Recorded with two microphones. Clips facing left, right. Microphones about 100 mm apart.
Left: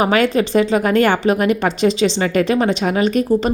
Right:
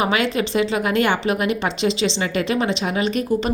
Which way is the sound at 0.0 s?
40° left (ahead or behind).